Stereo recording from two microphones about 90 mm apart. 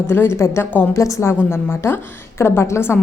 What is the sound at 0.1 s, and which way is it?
Speech, 30° left (ahead or behind).